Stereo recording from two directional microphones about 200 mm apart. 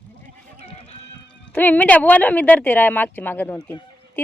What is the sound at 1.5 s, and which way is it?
A woman's voice, 10° left (ahead or behind).